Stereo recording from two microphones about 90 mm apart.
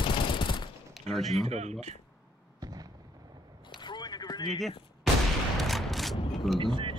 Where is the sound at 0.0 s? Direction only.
70° left (ahead or behind).